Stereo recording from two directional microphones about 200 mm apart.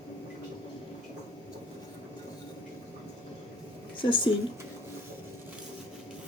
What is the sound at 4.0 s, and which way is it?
Speech, 25° left (ahead or behind).